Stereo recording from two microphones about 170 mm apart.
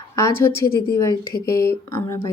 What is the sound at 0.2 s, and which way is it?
Speech, 15° left (ahead or behind).